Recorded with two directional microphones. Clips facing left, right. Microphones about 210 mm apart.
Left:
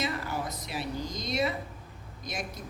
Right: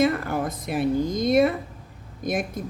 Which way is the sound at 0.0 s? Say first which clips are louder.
Right 10 dB; 55° right (ahead or behind).